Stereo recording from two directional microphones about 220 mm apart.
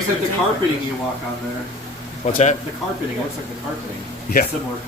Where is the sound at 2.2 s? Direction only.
35° left (ahead or behind).